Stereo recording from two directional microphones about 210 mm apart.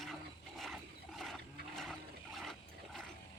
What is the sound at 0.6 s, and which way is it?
Mechanisms, centre (ahead or behind).